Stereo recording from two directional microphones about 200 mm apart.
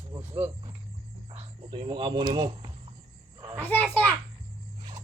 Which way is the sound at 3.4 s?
20° right (ahead or behind).